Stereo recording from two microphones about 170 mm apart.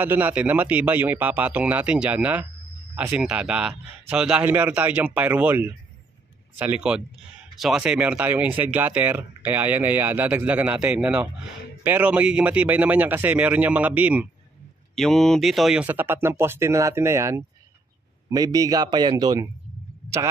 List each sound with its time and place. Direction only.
0.0 s speech: 10° right (ahead or behind)